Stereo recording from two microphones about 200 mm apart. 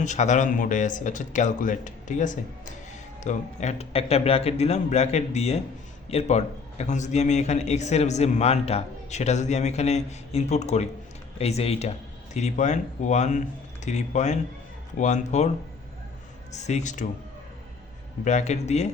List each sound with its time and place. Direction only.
0.0 s a man's voice: 35° left (ahead or behind)
16.5 s a man's voice: 35° left (ahead or behind)
18.3 s a man's voice: 35° left (ahead or behind)